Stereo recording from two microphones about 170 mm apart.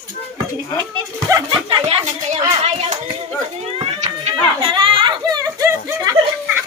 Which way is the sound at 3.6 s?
35° right (ahead or behind).